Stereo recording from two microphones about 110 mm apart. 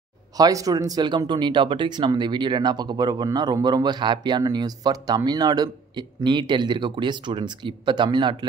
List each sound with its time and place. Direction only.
0.4 s speech: 35° right (ahead or behind)